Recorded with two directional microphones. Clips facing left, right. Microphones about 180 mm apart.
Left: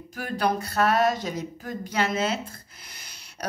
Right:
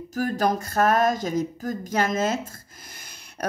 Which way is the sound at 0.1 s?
40° right (ahead or behind).